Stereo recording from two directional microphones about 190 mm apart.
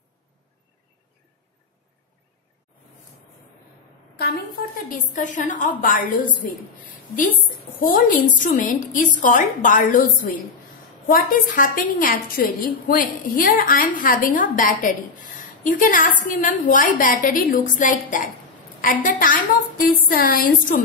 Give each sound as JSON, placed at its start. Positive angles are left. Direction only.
{"t": 4.8, "sound": "a woman's voice", "side_deg": 40}
{"t": 7.8, "sound": "a woman's voice", "side_deg": 45}